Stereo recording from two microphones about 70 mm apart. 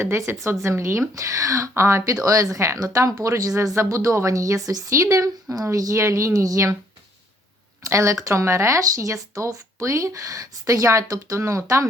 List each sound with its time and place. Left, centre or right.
0.0 s speech: right
2.2 s speech: right
7.9 s speech: right